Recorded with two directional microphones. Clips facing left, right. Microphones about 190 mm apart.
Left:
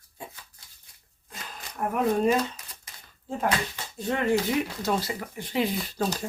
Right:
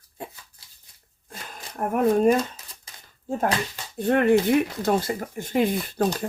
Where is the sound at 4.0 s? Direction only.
60° right (ahead or behind).